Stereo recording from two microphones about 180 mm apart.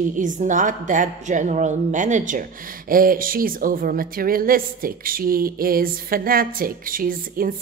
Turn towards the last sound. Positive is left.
turn(degrees=-50)  # may be behind; listen again after turning